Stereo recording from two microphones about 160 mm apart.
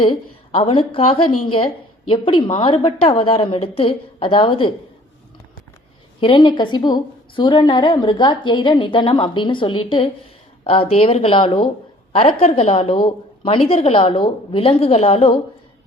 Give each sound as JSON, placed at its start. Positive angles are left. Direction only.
{"t": 0.0, "sound": "a woman's voice", "side_deg": 30}
{"t": 6.1, "sound": "a woman's voice", "side_deg": 35}
{"t": 12.1, "sound": "a woman's voice", "side_deg": 40}